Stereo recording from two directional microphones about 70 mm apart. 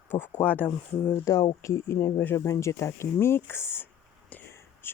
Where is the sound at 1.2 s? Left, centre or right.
Left.